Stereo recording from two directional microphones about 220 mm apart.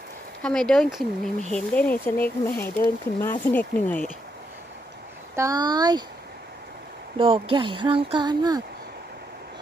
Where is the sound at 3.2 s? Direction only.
10° left (ahead or behind).